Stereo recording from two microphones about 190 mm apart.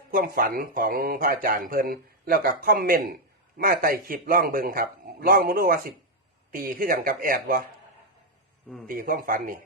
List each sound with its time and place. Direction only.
0.1 s speech: 50° right (ahead or behind)
9.0 s speech: 45° right (ahead or behind)